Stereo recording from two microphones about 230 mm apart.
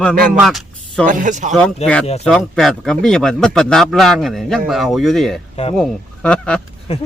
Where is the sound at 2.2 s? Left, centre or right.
Centre.